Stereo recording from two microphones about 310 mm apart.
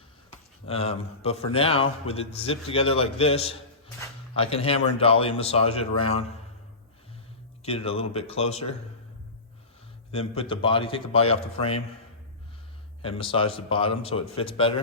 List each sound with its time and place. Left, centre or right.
0.7 s a man's voice: centre
7.6 s a man's voice: centre
10.1 s a man's voice: centre
13.0 s a man's voice: centre